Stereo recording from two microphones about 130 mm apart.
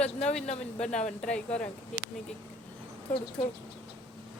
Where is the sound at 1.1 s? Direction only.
5° left (ahead or behind).